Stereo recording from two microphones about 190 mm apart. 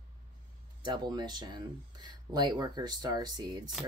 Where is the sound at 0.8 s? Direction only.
25° right (ahead or behind).